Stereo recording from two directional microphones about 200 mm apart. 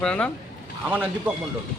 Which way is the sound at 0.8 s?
10° right (ahead or behind).